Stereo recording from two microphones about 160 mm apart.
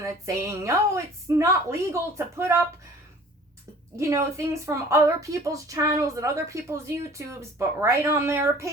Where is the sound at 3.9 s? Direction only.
20° right (ahead or behind).